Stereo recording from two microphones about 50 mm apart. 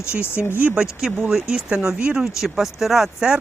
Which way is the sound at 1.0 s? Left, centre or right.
Centre.